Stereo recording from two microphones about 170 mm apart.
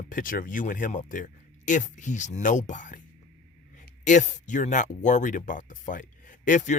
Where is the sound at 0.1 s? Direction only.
55° left (ahead or behind).